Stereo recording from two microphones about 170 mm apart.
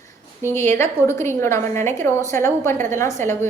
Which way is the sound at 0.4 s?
15° left (ahead or behind).